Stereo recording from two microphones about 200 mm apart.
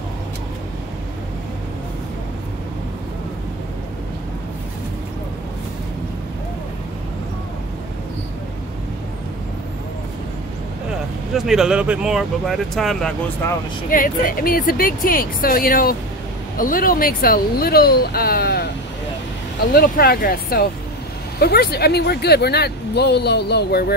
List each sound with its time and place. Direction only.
11.3 s speech: centre (ahead or behind)
13.8 s speech: 45° left (ahead or behind)
19.7 s speech: 50° left (ahead or behind)